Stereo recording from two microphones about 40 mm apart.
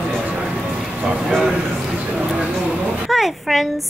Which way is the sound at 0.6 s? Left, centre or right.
Centre.